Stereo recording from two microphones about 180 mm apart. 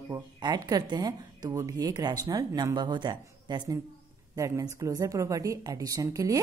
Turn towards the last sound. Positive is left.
turn(degrees=-20)  # may be behind; listen again after turning